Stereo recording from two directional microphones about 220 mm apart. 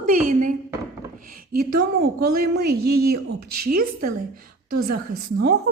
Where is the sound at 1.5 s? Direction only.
45° right (ahead or behind).